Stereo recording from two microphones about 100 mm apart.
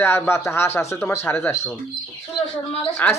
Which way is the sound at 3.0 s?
20° left (ahead or behind).